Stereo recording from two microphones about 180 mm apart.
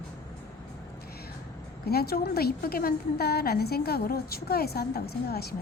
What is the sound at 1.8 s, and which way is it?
A woman's voice, 60° left (ahead or behind).